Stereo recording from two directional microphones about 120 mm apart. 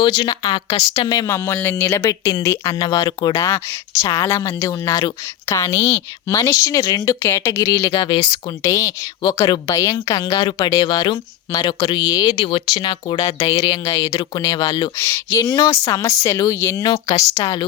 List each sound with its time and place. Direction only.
0.0 s speech: 40° left (ahead or behind)
0.9 s speech: 30° left (ahead or behind)
2.7 s speech: 35° left (ahead or behind)
3.4 s speech: 25° left (ahead or behind)
14.9 s speech: 20° left (ahead or behind)